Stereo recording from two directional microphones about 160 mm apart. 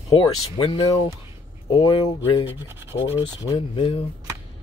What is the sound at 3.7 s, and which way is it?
Speech, 35° left (ahead or behind).